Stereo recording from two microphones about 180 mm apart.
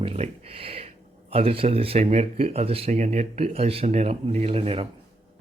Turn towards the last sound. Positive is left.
turn(degrees=-30)  # may be behind; listen again after turning